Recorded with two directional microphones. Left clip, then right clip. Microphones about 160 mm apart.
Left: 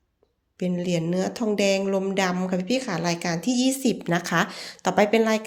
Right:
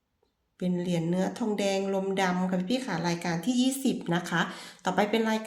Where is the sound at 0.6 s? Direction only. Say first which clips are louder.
Left 5 dB; 35° left (ahead or behind).